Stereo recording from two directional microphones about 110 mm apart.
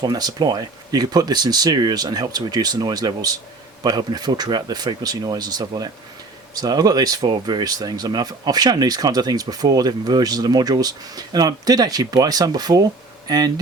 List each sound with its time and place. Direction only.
0.0 s speech: 35° right (ahead or behind)